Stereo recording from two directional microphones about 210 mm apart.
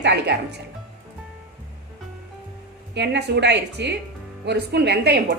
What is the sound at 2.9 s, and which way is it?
Speech, 55° right (ahead or behind).